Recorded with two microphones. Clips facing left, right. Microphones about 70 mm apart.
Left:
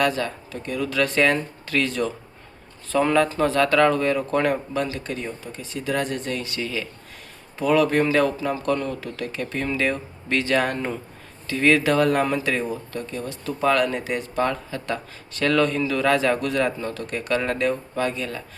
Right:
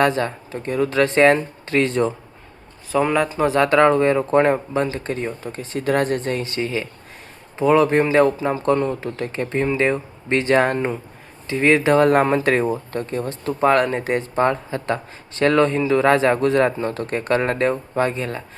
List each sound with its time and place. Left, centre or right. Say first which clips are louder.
0.0 s speech: right 4 dB; right
2.9 s speech: right 1 dB; centre; by 18.4 s right